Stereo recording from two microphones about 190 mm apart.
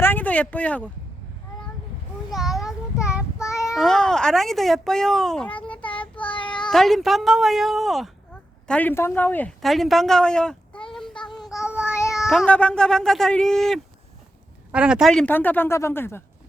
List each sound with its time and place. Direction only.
0.0 s a sound: 10° left (ahead or behind)
2.3 s a child's voice: centre (ahead or behind)
3.1 s child singing: 5° right (ahead or behind)
3.4 s child singing: 15° left (ahead or behind)
3.8 s a child's voice: centre (ahead or behind)
6.1 s child singing: 25° left (ahead or behind)
6.7 s a child's voice: centre (ahead or behind)
11.4 s child singing: 5° right (ahead or behind)
12.3 s a child's voice: 5° left (ahead or behind)